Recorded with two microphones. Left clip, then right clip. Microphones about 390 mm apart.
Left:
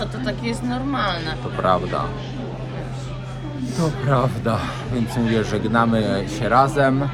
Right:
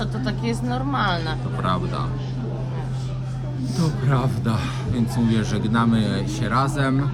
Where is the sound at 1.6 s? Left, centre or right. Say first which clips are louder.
Left 7 dB; centre.